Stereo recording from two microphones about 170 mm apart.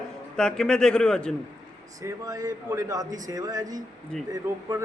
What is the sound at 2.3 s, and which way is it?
A man's voice, 20° right (ahead or behind).